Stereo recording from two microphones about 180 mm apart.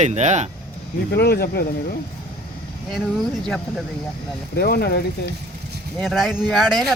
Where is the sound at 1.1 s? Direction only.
65° left (ahead or behind).